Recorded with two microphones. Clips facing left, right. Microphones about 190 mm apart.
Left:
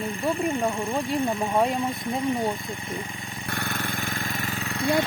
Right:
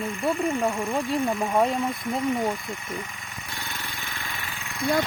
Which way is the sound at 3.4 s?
55° left (ahead or behind).